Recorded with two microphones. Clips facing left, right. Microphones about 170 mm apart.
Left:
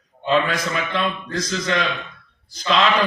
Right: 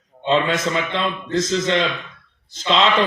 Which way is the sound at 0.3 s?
25° right (ahead or behind).